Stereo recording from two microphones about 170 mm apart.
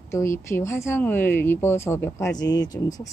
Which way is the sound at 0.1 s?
15° left (ahead or behind).